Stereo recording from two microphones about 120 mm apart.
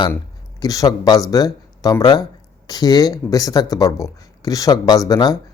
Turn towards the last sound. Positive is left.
turn(degrees=35)  # may be behind; listen again after turning